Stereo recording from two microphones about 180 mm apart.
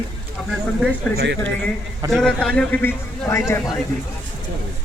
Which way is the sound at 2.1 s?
5° left (ahead or behind).